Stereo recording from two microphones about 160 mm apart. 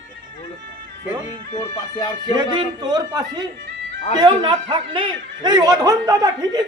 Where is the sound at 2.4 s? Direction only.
25° right (ahead or behind).